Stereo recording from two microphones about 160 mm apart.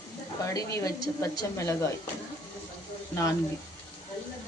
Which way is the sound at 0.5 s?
20° left (ahead or behind).